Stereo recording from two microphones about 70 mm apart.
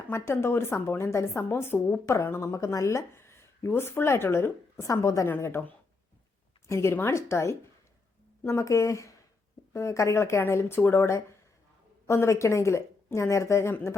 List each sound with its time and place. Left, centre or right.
0.1 s a woman's voice: left
5.4 s a woman's voice: left
6.7 s a woman's voice: left